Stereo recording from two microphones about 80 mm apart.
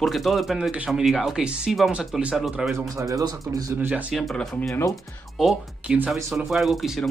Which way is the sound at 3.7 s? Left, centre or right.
Centre.